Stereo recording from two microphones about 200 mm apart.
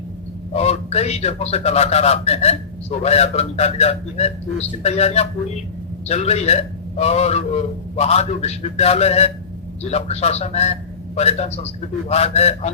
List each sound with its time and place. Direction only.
0.5 s a man's voice: 30° left (ahead or behind)